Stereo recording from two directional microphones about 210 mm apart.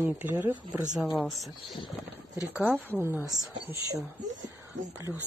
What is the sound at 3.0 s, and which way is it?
Speech, 15° right (ahead or behind).